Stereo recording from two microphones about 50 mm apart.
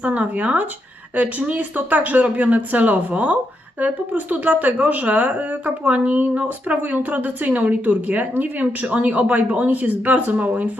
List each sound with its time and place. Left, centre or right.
0.0 s speech: right